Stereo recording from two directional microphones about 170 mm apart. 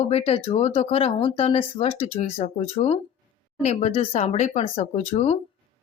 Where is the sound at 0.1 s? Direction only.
35° left (ahead or behind).